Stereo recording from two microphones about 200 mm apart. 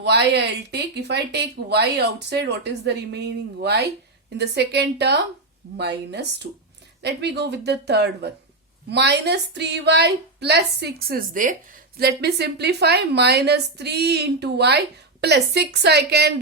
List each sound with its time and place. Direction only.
0.0 s a woman's voice: 60° right (ahead or behind)